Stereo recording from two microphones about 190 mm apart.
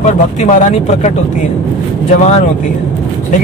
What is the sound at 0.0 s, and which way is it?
Speech, 40° left (ahead or behind).